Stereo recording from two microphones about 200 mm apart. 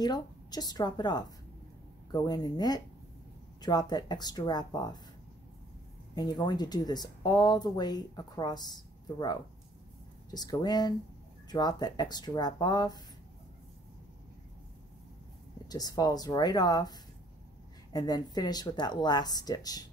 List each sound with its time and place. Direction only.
0.0 s speech: 20° left (ahead or behind)
6.1 s speech: 20° left (ahead or behind)
15.7 s speech: 20° left (ahead or behind)
17.9 s speech: 20° left (ahead or behind)